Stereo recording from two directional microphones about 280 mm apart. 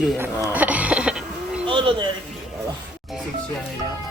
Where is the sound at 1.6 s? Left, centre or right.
Centre.